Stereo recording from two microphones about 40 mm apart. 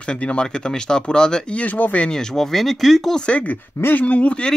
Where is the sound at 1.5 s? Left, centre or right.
Left.